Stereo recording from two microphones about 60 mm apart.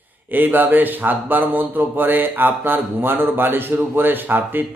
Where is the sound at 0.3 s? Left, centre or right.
Right.